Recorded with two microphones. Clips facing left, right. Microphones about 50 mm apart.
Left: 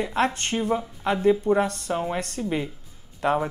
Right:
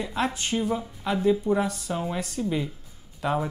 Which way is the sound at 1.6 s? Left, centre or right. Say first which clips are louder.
Left 2 dB; left.